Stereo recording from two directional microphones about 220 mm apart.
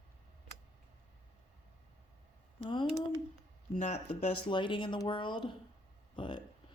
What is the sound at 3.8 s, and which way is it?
Speech, 35° left (ahead or behind).